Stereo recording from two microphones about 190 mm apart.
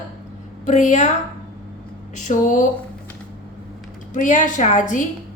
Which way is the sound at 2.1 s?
40° left (ahead or behind).